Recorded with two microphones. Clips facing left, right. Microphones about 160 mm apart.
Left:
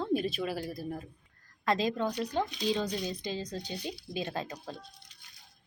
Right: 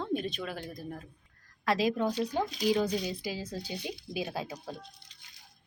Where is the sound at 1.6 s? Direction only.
5° right (ahead or behind).